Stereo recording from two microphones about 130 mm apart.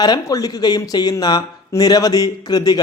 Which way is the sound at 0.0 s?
30° left (ahead or behind).